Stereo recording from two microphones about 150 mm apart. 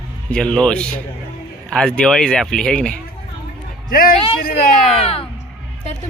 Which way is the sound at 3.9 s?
70° left (ahead or behind).